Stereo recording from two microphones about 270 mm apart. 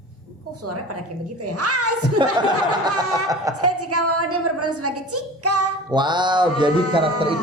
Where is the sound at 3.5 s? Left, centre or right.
Right.